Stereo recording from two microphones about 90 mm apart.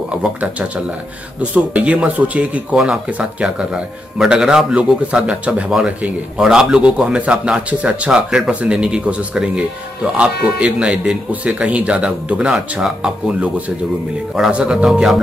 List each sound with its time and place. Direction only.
0.4 s speech: 15° right (ahead or behind)